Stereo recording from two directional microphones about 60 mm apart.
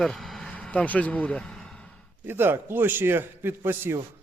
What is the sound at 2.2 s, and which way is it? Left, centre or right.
A man's voice, right.